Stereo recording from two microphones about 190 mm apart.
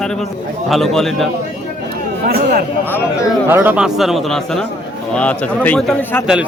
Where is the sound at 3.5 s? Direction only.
10° right (ahead or behind); by 6.2 s 10° left (ahead or behind).